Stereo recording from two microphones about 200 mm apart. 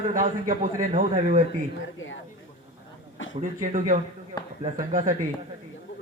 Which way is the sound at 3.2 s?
75° left (ahead or behind).